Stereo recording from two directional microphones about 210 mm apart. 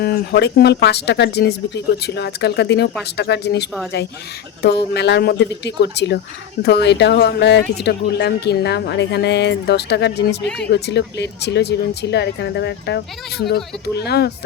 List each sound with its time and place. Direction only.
0.0 s speech: 50° left (ahead or behind)